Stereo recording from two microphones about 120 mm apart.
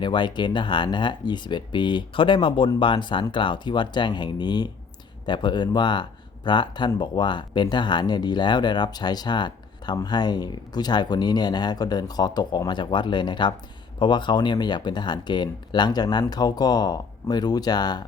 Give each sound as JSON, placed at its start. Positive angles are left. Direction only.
{"t": 0.0, "sound": "speech", "side_deg": 40}